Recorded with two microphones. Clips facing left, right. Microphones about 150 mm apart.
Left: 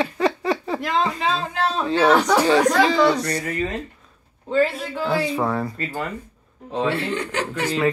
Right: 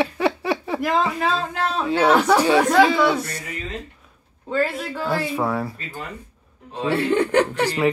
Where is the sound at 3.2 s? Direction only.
65° left (ahead or behind).